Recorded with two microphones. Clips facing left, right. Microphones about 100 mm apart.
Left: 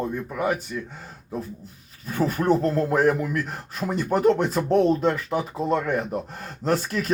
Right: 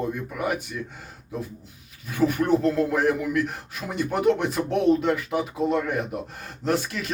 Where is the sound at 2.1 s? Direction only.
35° left (ahead or behind).